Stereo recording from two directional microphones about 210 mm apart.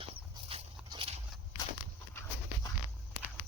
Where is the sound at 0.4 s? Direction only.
25° right (ahead or behind).